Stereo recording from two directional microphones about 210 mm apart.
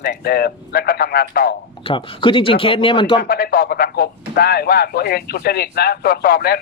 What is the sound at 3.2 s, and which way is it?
A man's voice, 45° left (ahead or behind).